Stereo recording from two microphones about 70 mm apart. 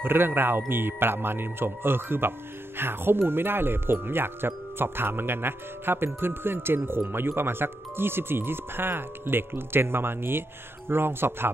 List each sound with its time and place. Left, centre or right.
0.0 s speech: right